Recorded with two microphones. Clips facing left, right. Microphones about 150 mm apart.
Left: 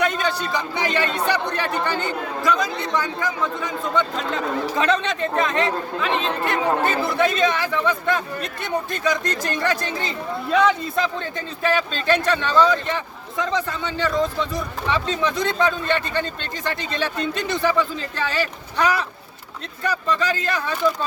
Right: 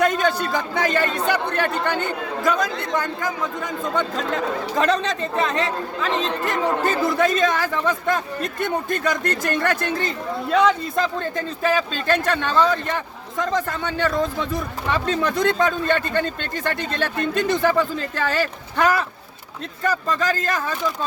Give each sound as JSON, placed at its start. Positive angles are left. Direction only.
{"t": 0.0, "sound": "speech", "side_deg": -50}
{"t": 4.8, "sound": "speech", "side_deg": -35}
{"t": 10.9, "sound": "speech", "side_deg": -45}